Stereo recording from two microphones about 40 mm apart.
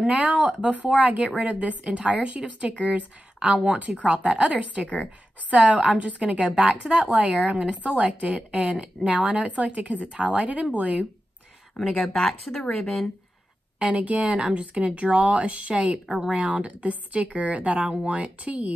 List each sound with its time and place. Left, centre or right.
0.0 s a woman's voice: right
12.0 s speech: centre
13.7 s speech: right
14.3 s speech: right
16.1 s a woman's voice: centre
16.3 s speech: right